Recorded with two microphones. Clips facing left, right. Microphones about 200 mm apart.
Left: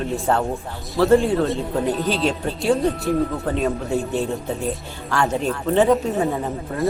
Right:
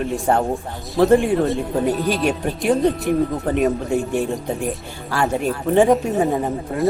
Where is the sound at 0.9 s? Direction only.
15° right (ahead or behind).